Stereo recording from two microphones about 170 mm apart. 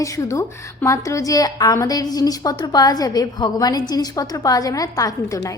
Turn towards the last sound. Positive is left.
turn(degrees=20)  # may be behind; listen again after turning